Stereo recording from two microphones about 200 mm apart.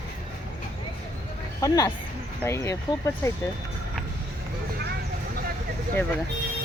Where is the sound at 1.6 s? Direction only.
15° left (ahead or behind).